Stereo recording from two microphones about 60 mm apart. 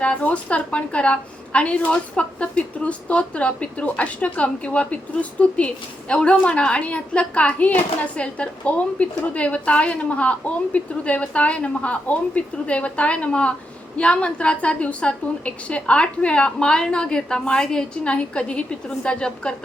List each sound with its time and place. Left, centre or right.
0.0 s a woman's voice: left